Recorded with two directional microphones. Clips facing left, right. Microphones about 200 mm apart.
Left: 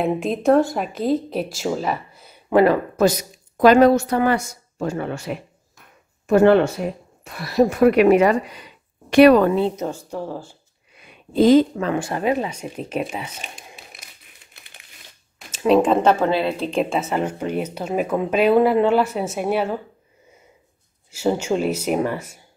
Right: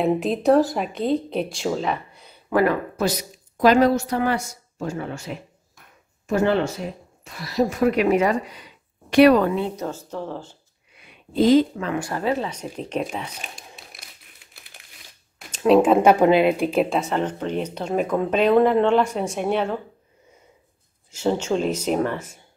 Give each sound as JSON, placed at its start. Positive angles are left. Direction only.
{"t": 0.0, "sound": "speech", "side_deg": 0}
{"t": 2.5, "sound": "speech", "side_deg": 30}
{"t": 3.0, "sound": "a woman's voice", "side_deg": 50}
{"t": 9.1, "sound": "speech", "side_deg": 50}
{"t": 9.8, "sound": "speech", "side_deg": 15}
{"t": 11.3, "sound": "speech", "side_deg": 50}
{"t": 11.9, "sound": "speech", "side_deg": 20}
{"t": 14.5, "sound": "crumpling", "side_deg": 0}
{"t": 15.5, "sound": "speech", "side_deg": 0}
{"t": 21.1, "sound": "speech", "side_deg": 10}